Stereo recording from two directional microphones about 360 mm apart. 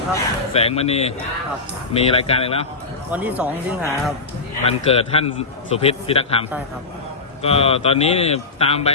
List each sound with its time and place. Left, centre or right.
0.1 s a man's voice: centre
3.1 s speech: centre
4.6 s a man's voice: centre
7.4 s a man's voice: centre